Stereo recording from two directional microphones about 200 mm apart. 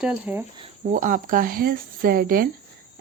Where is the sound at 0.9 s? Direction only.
40° right (ahead or behind).